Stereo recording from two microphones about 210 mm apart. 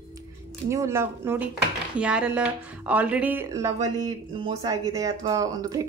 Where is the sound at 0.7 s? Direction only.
15° right (ahead or behind).